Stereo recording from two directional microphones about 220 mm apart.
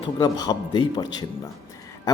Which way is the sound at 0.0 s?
20° left (ahead or behind).